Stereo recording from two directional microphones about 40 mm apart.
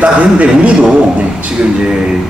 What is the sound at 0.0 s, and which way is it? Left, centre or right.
Speech, right.